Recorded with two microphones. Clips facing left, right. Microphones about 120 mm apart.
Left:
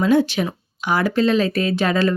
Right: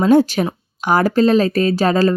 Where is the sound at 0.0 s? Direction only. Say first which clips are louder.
Right 4 dB; 40° right (ahead or behind).